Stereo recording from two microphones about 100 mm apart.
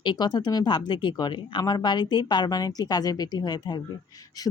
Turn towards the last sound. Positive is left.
turn(degrees=45)  # may be behind; listen again after turning